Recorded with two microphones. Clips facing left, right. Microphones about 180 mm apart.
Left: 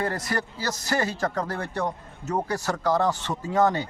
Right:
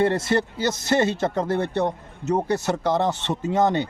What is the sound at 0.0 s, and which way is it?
A man's voice, 25° right (ahead or behind).